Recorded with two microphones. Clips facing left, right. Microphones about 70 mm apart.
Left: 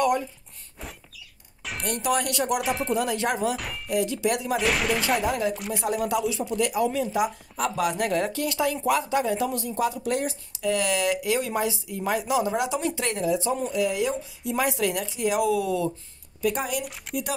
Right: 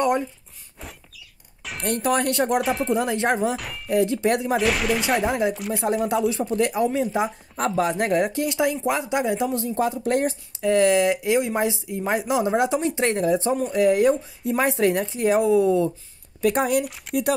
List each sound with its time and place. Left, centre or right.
1.6 s chink: centre
1.9 s speech: right
2.6 s speech: centre
2.9 s speech: right
3.5 s speech: centre
3.9 s speech: right
4.6 s speech: centre
5.2 s speech: right
5.5 s speech: centre
5.9 s speech: right
13.2 s speech: right
14.5 s speech: right
16.3 s speech: right
16.8 s speech: centre